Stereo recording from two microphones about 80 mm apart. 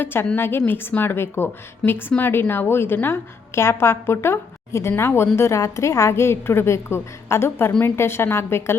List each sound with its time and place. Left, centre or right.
0.0 s a woman's voice: left